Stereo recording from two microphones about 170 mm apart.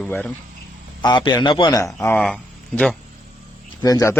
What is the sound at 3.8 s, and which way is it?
Speech, 20° left (ahead or behind).